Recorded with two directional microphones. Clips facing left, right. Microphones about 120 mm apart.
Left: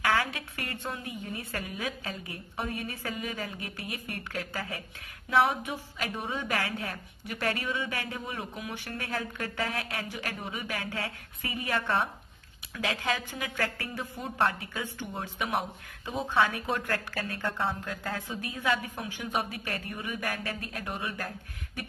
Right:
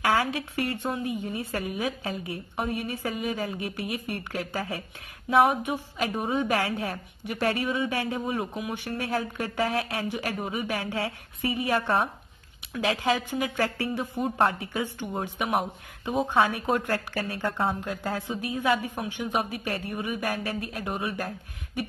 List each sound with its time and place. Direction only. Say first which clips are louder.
0.0 s a woman's voice: right 4 dB; 25° right (ahead or behind)